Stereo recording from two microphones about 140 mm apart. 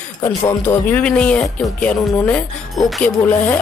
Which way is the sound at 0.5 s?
15° left (ahead or behind).